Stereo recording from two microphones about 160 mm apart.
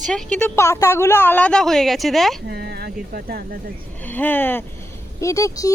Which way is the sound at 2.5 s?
90° right.